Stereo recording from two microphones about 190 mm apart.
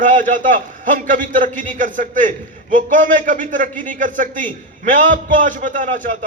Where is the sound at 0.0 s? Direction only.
40° right (ahead or behind).